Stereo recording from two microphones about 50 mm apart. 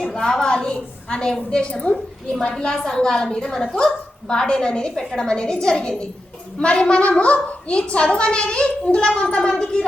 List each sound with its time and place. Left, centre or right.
0.0 s a woman's voice: centre